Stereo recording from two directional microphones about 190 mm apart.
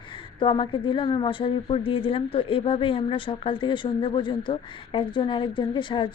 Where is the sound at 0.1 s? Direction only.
25° left (ahead or behind).